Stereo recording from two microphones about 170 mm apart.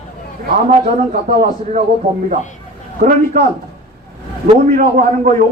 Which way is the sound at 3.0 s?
55° right (ahead or behind).